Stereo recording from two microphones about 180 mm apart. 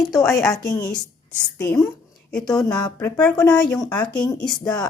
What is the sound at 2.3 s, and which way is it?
Speech, 5° left (ahead or behind).